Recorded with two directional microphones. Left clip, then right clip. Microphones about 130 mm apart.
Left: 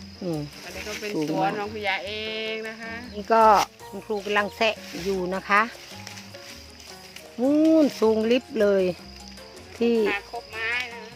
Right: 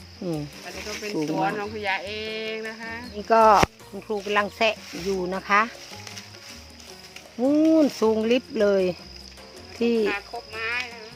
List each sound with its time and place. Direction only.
0.2 s speech: 10° left (ahead or behind)
0.8 s speech: 25° left (ahead or behind); by 5.7 s 5° left (ahead or behind)
7.4 s speech: 10° left (ahead or behind)